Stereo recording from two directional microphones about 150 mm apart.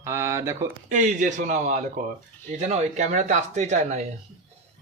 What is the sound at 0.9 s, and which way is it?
Speech, 55° right (ahead or behind).